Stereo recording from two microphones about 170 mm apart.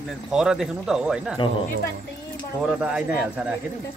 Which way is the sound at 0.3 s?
5° right (ahead or behind).